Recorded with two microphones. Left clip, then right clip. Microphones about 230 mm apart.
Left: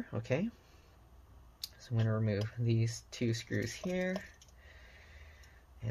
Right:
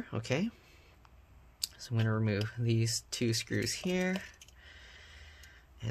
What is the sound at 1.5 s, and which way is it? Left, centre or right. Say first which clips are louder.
Speech: right 4 dB; centre.